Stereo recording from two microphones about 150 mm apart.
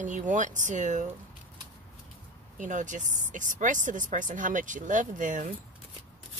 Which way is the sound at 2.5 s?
55° right (ahead or behind).